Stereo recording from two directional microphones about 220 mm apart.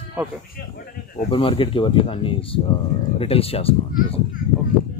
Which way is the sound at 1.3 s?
25° left (ahead or behind).